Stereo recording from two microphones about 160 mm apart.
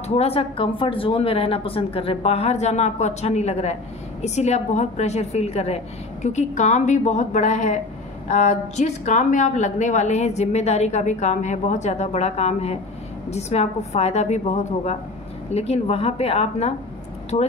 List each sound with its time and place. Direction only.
0.1 s a woman's voice: 40° left (ahead or behind)